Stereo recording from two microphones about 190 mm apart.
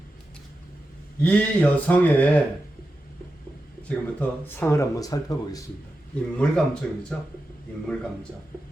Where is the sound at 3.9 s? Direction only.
10° left (ahead or behind).